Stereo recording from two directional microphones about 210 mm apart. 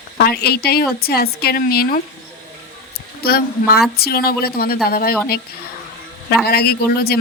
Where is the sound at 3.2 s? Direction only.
45° left (ahead or behind).